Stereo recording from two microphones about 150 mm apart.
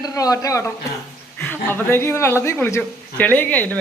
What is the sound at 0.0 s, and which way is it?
A man's voice, 25° left (ahead or behind).